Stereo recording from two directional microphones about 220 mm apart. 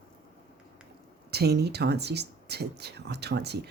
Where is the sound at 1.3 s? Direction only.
45° right (ahead or behind).